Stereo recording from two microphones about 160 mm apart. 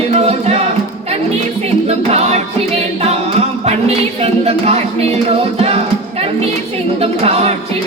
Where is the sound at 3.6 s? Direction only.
40° right (ahead or behind).